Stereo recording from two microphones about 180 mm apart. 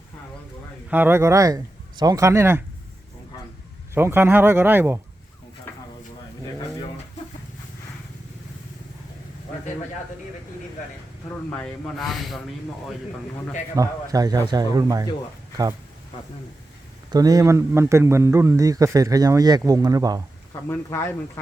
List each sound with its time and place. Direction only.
0.9 s a man's voice: 10° right (ahead or behind)
3.9 s a man's voice: 15° right (ahead or behind)
11.5 s speech: 5° left (ahead or behind)
13.7 s a man's voice: 20° right (ahead or behind)
17.1 s a man's voice: 20° right (ahead or behind)
20.7 s speech: 15° left (ahead or behind)